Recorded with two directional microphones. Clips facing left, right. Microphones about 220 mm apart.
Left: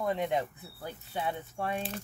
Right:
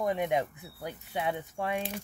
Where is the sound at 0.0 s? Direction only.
15° right (ahead or behind).